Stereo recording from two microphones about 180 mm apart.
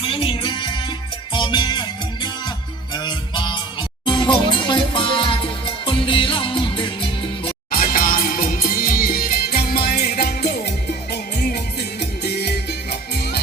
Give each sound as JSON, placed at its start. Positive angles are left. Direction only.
{"t": 0.0, "sound": "music", "side_deg": 30}
{"t": 2.9, "sound": "music", "side_deg": 25}
{"t": 7.7, "sound": "music", "side_deg": 50}